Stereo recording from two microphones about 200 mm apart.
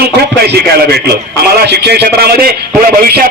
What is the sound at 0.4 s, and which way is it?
A man's voice, 55° right (ahead or behind).